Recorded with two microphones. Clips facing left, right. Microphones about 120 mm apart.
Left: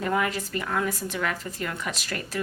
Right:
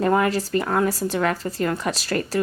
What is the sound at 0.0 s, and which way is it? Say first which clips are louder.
A woman's voice: right 7 dB; 40° right (ahead or behind).